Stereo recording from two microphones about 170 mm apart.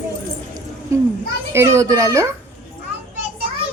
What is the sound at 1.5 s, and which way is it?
Speech, 15° right (ahead or behind).